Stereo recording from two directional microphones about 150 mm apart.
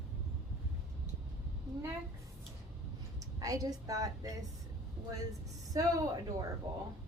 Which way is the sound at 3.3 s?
25° right (ahead or behind).